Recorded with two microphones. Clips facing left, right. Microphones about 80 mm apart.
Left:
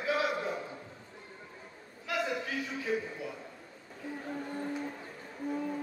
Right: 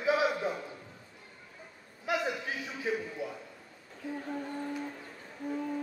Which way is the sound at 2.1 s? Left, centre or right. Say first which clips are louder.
Right 2 dB; right.